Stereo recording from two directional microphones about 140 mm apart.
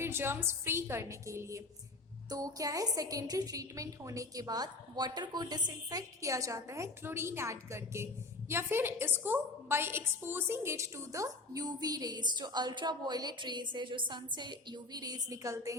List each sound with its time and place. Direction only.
0.0 s a woman's voice: 15° right (ahead or behind)